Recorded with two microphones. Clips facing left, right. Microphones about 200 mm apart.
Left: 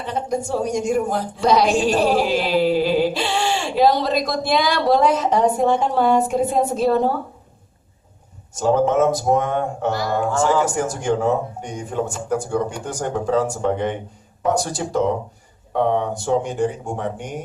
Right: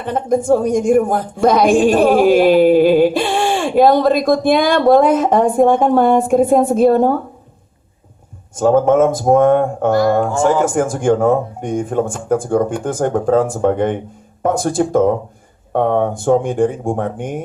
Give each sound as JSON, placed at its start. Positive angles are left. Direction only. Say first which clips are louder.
{"t": 0.0, "sound": "a woman's voice", "louder": "right 7 dB", "side_deg": -50}
{"t": 8.5, "sound": "a woman's voice", "louder": "right 5 dB", "side_deg": -50}